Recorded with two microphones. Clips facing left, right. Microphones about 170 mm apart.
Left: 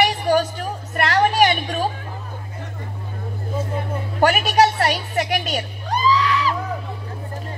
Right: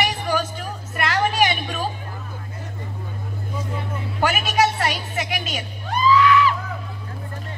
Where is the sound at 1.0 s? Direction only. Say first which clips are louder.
Left 4 dB; 45° left (ahead or behind).